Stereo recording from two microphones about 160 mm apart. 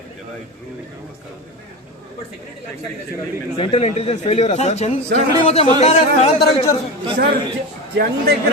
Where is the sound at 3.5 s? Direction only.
35° left (ahead or behind).